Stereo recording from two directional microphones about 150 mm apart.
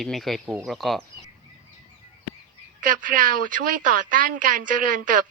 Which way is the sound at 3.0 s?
65° right (ahead or behind).